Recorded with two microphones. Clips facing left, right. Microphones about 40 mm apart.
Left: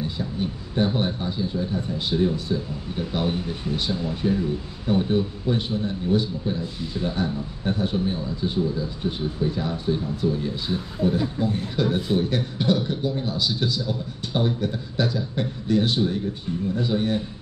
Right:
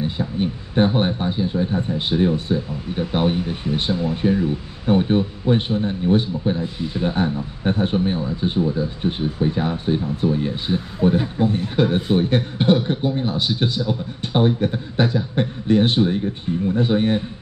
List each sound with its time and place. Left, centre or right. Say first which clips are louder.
0.0 s speech: right 5 dB; right